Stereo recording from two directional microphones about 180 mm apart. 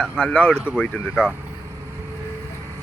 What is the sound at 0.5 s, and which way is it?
Speech, 5° right (ahead or behind).